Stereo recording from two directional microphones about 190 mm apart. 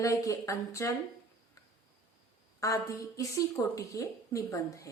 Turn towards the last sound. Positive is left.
turn(degrees=15)  # may be behind; listen again after turning